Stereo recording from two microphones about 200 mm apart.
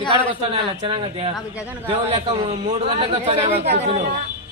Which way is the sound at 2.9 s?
30° right (ahead or behind).